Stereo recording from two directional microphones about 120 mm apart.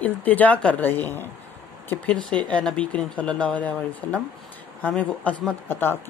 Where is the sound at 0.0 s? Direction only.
15° left (ahead or behind).